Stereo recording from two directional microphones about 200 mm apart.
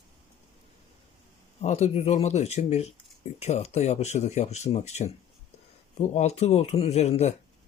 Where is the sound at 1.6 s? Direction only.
35° left (ahead or behind).